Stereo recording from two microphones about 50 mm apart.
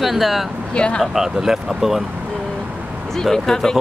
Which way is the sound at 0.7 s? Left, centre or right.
Centre.